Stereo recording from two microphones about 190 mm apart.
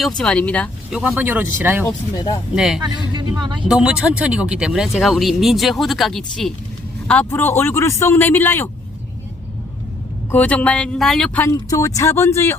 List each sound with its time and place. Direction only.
0.2 s speech: 5° left (ahead or behind)
0.9 s speech: 5° right (ahead or behind)
2.8 s speech: 25° right (ahead or behind)
3.7 s speech: 5° right (ahead or behind); by 8.7 s 10° left (ahead or behind)
10.3 s speech: 10° left (ahead or behind)
11.4 s speech: 15° left (ahead or behind)